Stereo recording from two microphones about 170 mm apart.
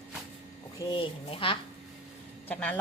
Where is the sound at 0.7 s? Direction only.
30° left (ahead or behind).